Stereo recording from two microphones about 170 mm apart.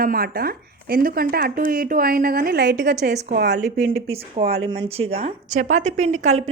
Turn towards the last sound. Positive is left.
turn(degrees=-45)  # may be behind; listen again after turning